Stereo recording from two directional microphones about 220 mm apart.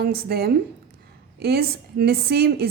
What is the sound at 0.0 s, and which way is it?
A woman's voice, 45° right (ahead or behind).